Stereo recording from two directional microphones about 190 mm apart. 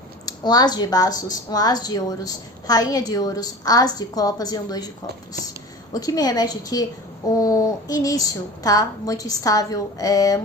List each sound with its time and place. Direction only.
0.3 s speech: 20° left (ahead or behind)
5.9 s a woman's voice: 20° left (ahead or behind)